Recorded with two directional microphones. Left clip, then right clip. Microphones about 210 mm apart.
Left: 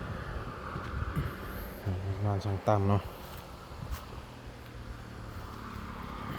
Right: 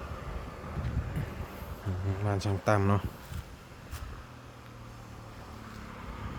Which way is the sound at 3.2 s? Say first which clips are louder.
Left 2 dB; 55° left (ahead or behind).